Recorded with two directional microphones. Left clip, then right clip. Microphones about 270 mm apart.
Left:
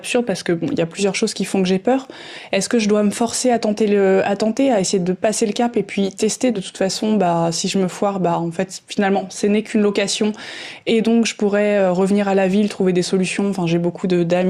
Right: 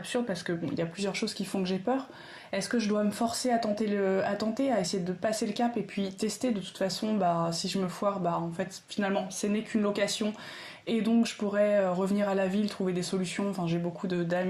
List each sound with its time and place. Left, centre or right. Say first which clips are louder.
0.1 s speech: left 13 dB; left